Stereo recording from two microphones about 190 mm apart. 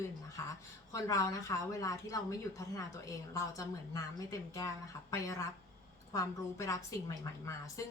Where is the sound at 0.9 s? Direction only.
15° left (ahead or behind).